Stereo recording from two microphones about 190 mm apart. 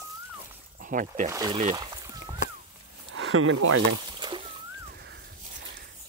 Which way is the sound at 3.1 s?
70° right (ahead or behind).